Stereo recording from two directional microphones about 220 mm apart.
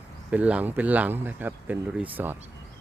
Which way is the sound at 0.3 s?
5° right (ahead or behind).